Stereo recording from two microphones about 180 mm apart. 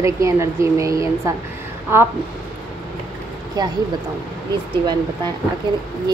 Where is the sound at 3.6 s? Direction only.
20° right (ahead or behind).